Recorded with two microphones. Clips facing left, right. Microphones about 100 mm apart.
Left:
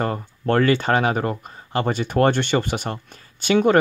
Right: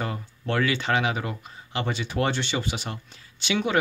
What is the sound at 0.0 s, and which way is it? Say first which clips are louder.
Speech: left 8 dB; 45° left (ahead or behind).